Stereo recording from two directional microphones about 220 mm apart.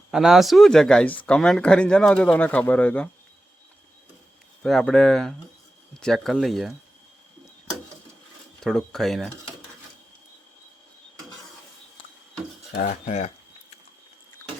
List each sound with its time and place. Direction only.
0.1 s speech: centre (ahead or behind)
4.6 s speech: centre (ahead or behind)
8.6 s speech: centre (ahead or behind)
12.8 s speech: 30° left (ahead or behind)
14.4 s a sound: 15° left (ahead or behind)